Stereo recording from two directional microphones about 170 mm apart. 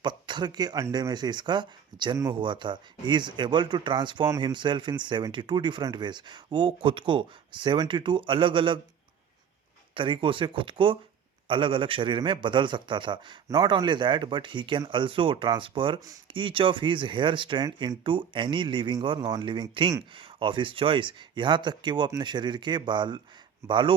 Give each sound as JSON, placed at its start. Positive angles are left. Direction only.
{"t": 0.0, "sound": "a man's voice", "side_deg": -25}
{"t": 9.9, "sound": "a man's voice", "side_deg": -30}